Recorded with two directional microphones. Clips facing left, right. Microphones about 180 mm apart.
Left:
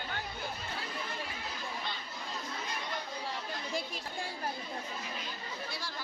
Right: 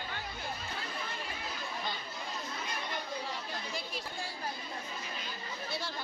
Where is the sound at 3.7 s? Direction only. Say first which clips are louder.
Left 2 dB; 50° left (ahead or behind).